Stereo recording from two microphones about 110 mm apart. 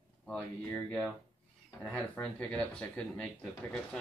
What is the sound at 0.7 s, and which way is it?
Speech, 15° left (ahead or behind).